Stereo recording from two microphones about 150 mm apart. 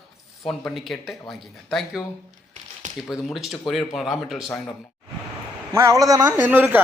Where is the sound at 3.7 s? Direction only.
Centre (ahead or behind).